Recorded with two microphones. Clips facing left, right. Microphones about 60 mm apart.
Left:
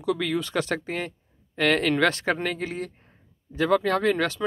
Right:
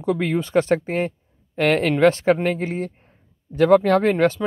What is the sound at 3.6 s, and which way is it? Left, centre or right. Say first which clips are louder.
Speech: right 7 dB; right.